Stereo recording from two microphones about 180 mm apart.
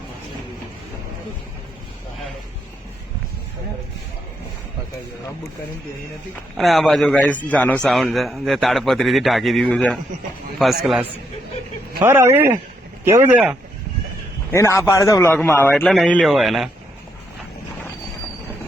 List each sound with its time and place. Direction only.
6.6 s a man's voice: centre (ahead or behind)
12.0 s speech: 15° right (ahead or behind)
14.5 s a man's voice: 15° left (ahead or behind); by 16.6 s centre (ahead or behind)